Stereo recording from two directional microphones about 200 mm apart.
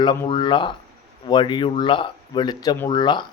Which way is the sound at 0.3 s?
25° left (ahead or behind).